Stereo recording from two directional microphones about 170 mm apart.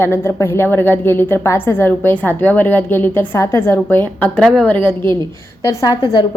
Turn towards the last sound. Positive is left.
turn(degrees=25)  # may be behind; listen again after turning